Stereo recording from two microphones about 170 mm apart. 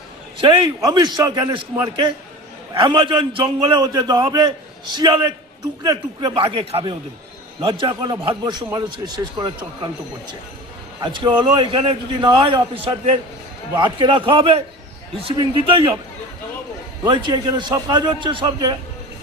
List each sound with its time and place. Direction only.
0.3 s a man's voice: 30° right (ahead or behind)
11.0 s a man's voice: 25° right (ahead or behind)
17.0 s a man's voice: 25° right (ahead or behind)